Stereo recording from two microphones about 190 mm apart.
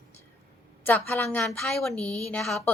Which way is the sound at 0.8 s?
10° left (ahead or behind).